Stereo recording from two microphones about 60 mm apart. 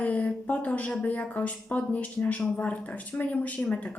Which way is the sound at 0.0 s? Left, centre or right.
Left.